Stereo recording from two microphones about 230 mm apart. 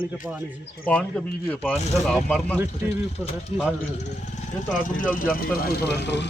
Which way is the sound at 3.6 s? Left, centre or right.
Centre.